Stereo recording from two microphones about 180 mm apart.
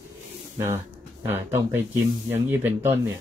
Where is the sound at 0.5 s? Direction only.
15° right (ahead or behind).